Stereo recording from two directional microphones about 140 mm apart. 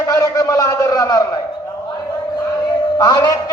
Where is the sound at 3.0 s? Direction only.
30° left (ahead or behind).